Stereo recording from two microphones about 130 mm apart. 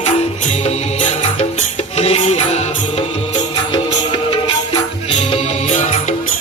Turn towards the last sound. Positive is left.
turn(degrees=65)  # may be behind; listen again after turning